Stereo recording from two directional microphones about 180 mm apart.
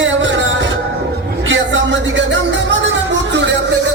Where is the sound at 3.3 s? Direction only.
80° right.